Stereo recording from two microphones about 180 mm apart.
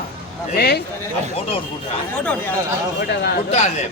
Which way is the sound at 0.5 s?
60° left (ahead or behind).